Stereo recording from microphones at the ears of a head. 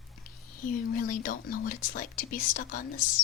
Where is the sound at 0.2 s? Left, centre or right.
Left.